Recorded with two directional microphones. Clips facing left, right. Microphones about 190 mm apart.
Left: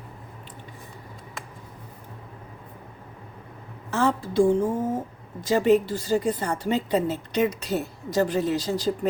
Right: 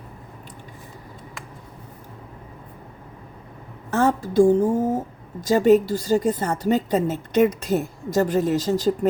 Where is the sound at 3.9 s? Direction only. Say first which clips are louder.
Right 4 dB; 45° right (ahead or behind).